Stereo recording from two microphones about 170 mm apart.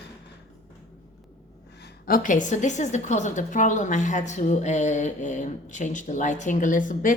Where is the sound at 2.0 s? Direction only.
55° left (ahead or behind).